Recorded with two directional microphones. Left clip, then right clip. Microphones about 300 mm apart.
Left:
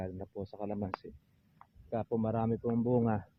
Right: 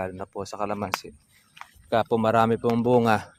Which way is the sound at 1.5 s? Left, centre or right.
Right.